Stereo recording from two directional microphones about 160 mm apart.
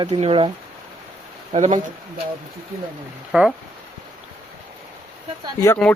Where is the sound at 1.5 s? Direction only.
45° right (ahead or behind).